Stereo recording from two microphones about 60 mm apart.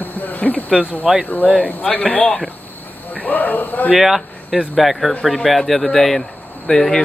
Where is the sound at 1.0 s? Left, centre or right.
Centre.